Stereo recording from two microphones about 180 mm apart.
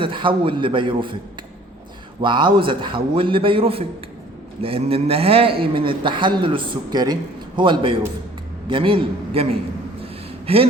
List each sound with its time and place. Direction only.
0.0 s a man's voice: 30° right (ahead or behind)
2.2 s a man's voice: 25° right (ahead or behind)